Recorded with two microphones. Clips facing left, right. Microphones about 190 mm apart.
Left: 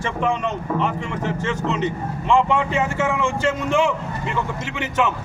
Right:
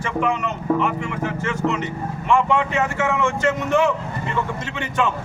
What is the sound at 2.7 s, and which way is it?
Speech, 15° left (ahead or behind).